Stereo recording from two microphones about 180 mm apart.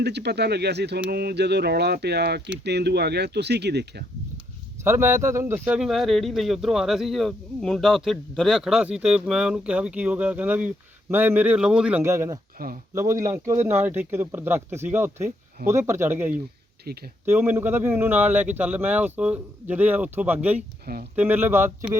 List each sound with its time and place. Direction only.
0.0 s speech: 65° right (ahead or behind)
1.1 s a sound: 65° right (ahead or behind)
2.6 s speech: 65° right (ahead or behind)
4.8 s a man's voice: 15° right (ahead or behind)
16.9 s a sound: 60° right (ahead or behind)
17.2 s a man's voice: 10° right (ahead or behind)